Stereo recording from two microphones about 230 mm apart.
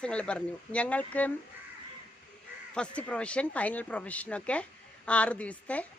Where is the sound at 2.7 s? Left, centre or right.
Centre.